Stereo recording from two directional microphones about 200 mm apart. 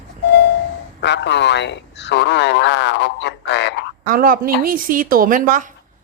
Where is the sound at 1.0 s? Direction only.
60° left (ahead or behind).